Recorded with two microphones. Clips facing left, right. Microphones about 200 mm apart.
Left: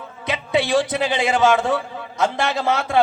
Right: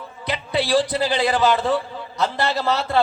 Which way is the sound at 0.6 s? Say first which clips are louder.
Right 4 dB; 20° left (ahead or behind).